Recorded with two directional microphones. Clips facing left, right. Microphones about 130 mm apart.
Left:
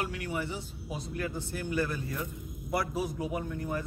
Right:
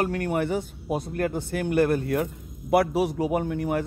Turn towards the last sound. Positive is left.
turn(degrees=-80)